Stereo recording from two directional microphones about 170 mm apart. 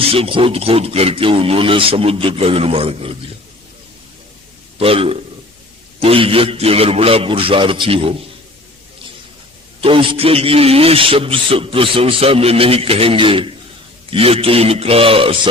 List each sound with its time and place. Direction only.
0.1 s a man's voice: 30° right (ahead or behind)
4.8 s a man's voice: 35° right (ahead or behind)
9.8 s a man's voice: 30° right (ahead or behind)